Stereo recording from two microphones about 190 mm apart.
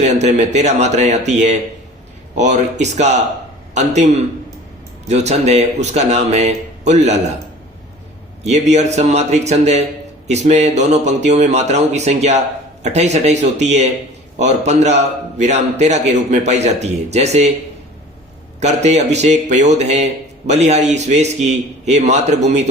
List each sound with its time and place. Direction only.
0.0 s a man's voice: 35° right (ahead or behind)
8.4 s a man's voice: 35° right (ahead or behind)
18.6 s a man's voice: 35° right (ahead or behind)